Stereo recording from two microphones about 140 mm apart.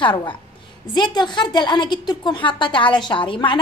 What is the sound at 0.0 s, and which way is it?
Speech, 35° left (ahead or behind).